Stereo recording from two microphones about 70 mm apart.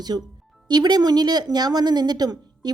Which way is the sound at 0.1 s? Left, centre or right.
Right.